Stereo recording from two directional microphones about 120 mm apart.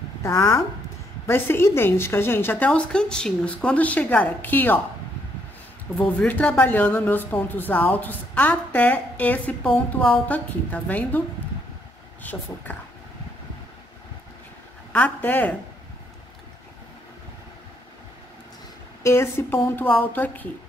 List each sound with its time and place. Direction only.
0.2 s speech: 25° left (ahead or behind)
5.9 s speech: 10° left (ahead or behind)
14.9 s speech: 15° left (ahead or behind)
19.0 s speech: 20° left (ahead or behind)